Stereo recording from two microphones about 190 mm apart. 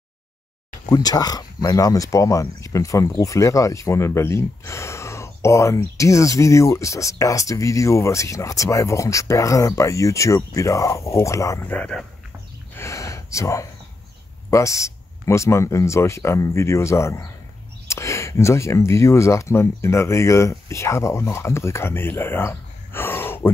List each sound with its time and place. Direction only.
0.8 s speech: 20° left (ahead or behind)
12.7 s gasp: 15° left (ahead or behind)
14.5 s speech: 15° left (ahead or behind)